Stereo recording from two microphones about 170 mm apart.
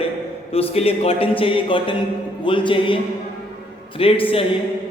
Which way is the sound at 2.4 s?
30° left (ahead or behind).